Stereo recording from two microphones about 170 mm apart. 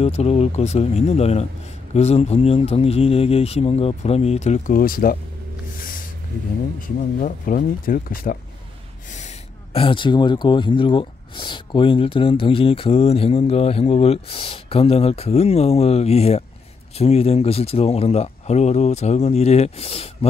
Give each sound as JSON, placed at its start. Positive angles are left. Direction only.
{"t": 0.0, "sound": "speech", "side_deg": 40}
{"t": 7.2, "sound": "speech", "side_deg": 50}
{"t": 9.1, "sound": "speech", "side_deg": 40}